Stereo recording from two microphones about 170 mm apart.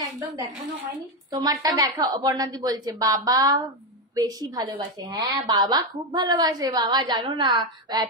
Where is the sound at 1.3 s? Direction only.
20° right (ahead or behind).